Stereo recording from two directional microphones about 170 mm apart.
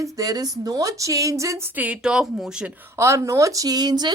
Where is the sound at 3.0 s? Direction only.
15° right (ahead or behind).